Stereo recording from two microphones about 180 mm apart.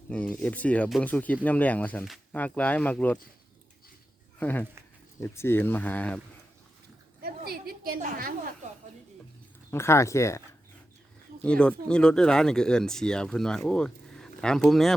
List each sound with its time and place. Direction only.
0.1 s speech: 5° left (ahead or behind)
4.4 s speech: 10° left (ahead or behind)
7.2 s a sound: 60° right (ahead or behind)
9.7 s speech: 15° left (ahead or behind)
11.4 s speech: 5° left (ahead or behind)